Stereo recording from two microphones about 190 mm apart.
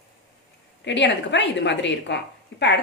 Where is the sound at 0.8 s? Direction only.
70° left (ahead or behind).